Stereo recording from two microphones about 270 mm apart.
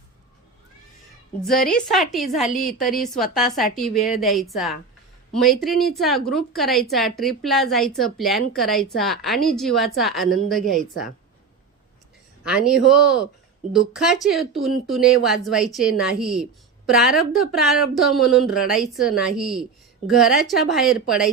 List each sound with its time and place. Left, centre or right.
1.9 s a woman's voice: centre
2.6 s a woman's voice: left
2.9 s a woman's voice: centre
12.5 s a woman's voice: centre